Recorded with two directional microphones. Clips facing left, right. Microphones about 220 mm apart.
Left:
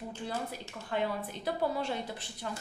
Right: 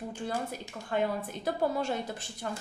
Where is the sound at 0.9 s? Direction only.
45° right (ahead or behind).